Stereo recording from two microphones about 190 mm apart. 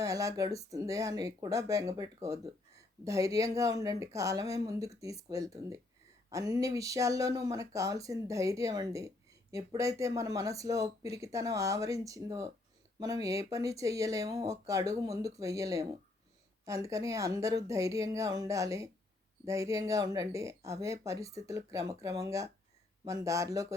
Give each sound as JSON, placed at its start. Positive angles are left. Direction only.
{"t": 0.0, "sound": "speech", "side_deg": -15}